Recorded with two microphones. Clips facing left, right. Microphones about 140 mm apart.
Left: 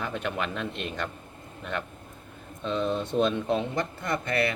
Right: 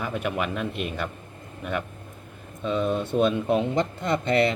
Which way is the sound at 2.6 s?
10° right (ahead or behind).